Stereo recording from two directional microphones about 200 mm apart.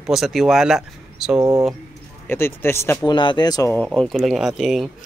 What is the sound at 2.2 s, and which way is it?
Speech, 10° left (ahead or behind).